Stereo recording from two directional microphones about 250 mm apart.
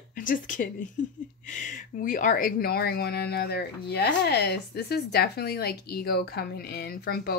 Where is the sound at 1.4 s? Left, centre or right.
Left.